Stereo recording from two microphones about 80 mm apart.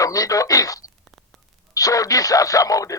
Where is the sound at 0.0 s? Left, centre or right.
Left.